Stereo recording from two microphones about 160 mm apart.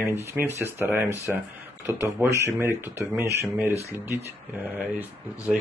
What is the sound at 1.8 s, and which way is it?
Speech, 15° right (ahead or behind).